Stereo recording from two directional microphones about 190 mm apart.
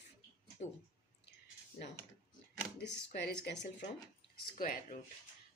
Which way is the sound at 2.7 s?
55° left (ahead or behind).